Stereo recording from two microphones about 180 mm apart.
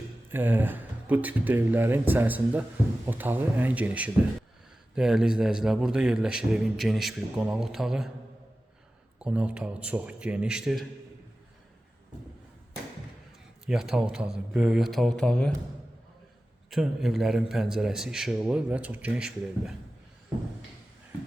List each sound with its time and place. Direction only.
0.3 s a man's voice: 10° right (ahead or behind)
9.1 s speech: 5° right (ahead or behind)
13.7 s a man's voice: 5° right (ahead or behind)
16.6 s a man's voice: centre (ahead or behind)